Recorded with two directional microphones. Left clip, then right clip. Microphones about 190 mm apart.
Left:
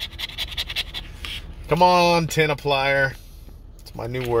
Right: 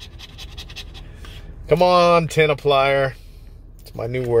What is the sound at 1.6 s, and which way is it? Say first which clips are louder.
Speech: right 2 dB; 20° right (ahead or behind).